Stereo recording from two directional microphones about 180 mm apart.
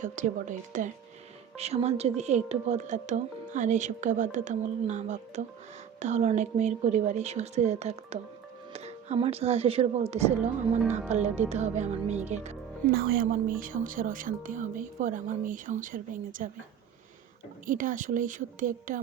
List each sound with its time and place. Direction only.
0.0 s a woman's voice: 45° right (ahead or behind)
12.9 s speech: 55° right (ahead or behind)
17.7 s speech: 45° right (ahead or behind)